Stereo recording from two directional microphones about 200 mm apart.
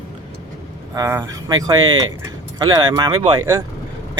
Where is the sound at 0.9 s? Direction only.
15° right (ahead or behind).